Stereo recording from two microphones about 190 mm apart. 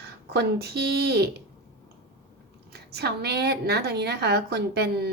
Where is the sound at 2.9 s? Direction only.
60° right (ahead or behind).